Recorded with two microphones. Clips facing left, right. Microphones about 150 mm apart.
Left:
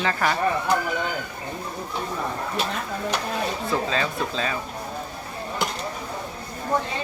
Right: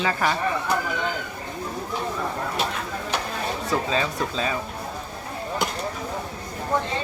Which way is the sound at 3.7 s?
10° right (ahead or behind).